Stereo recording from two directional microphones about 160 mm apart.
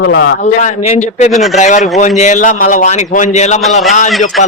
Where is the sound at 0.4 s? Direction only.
45° left (ahead or behind).